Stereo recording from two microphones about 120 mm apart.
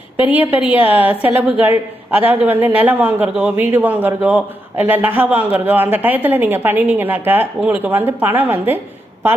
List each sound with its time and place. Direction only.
0.2 s a man's voice: 15° right (ahead or behind)